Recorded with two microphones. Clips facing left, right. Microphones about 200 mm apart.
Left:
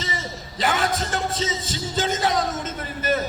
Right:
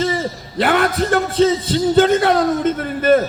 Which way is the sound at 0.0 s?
55° right (ahead or behind).